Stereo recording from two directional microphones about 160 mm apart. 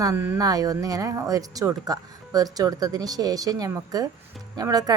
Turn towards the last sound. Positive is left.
turn(degrees=-25)  # may be behind; listen again after turning